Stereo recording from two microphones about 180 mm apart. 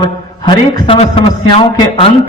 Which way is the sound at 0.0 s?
25° left (ahead or behind).